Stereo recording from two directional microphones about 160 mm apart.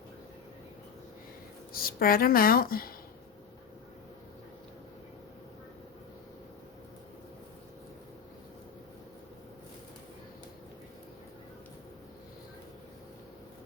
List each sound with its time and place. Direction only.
1.7 s speech: 65° left (ahead or behind)